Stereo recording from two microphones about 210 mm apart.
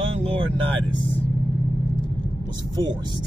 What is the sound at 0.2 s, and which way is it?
Vehicle, 25° right (ahead or behind).